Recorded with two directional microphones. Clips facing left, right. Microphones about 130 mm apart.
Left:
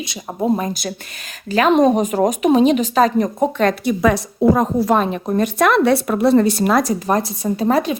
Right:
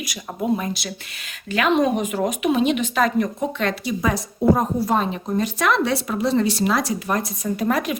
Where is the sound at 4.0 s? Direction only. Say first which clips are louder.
Left 6 dB; 80° left.